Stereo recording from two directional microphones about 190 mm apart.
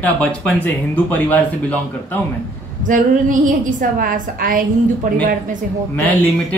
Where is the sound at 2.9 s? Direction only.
45° right (ahead or behind).